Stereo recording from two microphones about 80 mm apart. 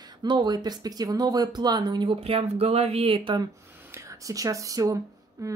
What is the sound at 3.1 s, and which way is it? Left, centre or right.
Speech, right.